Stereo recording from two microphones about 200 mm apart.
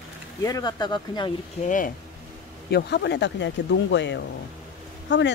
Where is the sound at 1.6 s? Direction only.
40° left (ahead or behind).